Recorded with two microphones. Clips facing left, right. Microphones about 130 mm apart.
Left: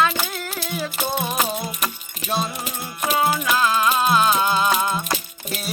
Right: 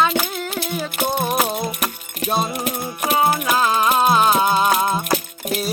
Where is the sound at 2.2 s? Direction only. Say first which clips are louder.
Right 4 dB; 45° right (ahead or behind).